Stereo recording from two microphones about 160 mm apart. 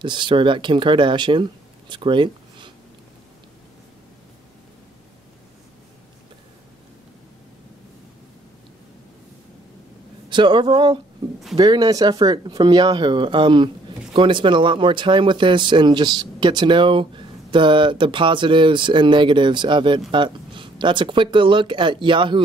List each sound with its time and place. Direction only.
0.0 s speech: 30° right (ahead or behind)
10.3 s speech: 30° right (ahead or behind)